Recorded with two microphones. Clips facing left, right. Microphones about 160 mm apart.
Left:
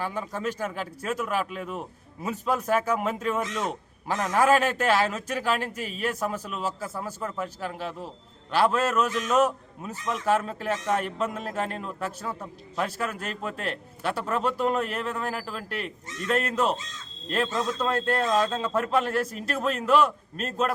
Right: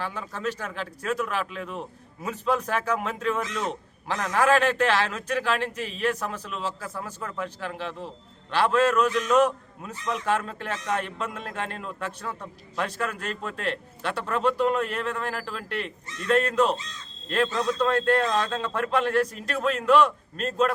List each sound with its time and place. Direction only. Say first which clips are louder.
0.0 s a man's voice: left 1 dB; 10° left (ahead or behind)
17.7 s a man's voice: right 5 dB; 10° left (ahead or behind)